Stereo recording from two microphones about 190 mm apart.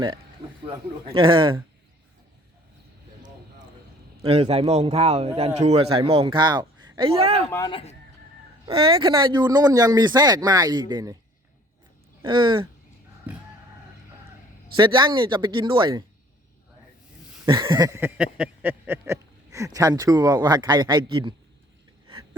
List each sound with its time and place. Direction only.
1.1 s speech: 25° right (ahead or behind)
4.2 s speech: 30° right (ahead or behind)
7.5 s speech: 20° left (ahead or behind)
8.6 s speech: 30° right (ahead or behind)
12.2 s speech: 25° right (ahead or behind)
14.8 s speech: 25° right (ahead or behind)
17.4 s speech: 25° right (ahead or behind)